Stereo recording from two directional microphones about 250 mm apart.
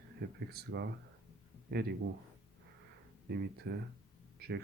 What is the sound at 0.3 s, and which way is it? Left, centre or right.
Speech, right.